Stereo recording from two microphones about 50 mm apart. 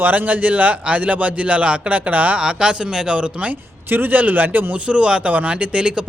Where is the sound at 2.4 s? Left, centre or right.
Centre.